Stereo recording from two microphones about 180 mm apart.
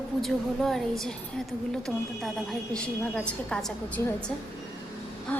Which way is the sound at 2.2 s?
Centre (ahead or behind).